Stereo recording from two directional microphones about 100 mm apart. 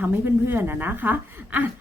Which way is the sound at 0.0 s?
20° right (ahead or behind).